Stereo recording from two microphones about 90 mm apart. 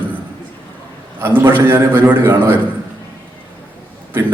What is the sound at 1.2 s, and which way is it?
A man's voice, 25° right (ahead or behind).